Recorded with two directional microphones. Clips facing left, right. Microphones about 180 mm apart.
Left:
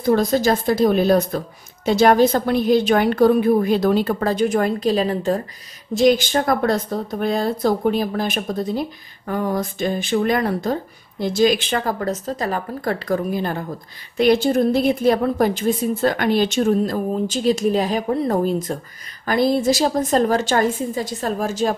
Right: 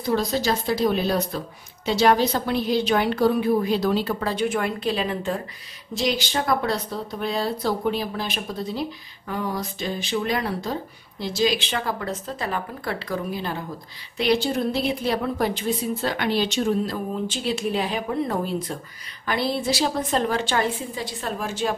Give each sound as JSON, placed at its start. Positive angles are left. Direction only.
{"t": 0.0, "sound": "a woman's voice", "side_deg": 50}